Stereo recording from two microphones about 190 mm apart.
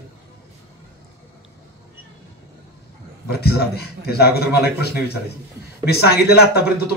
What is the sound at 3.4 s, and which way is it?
Speech, 55° left (ahead or behind).